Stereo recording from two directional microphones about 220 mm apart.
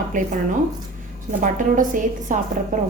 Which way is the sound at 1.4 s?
35° right (ahead or behind).